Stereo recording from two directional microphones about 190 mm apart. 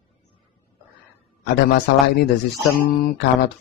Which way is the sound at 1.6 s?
60° left (ahead or behind).